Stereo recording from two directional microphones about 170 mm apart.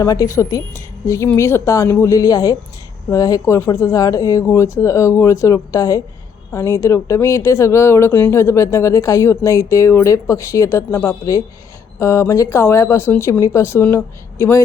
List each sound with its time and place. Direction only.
0.0 s speech: 20° left (ahead or behind)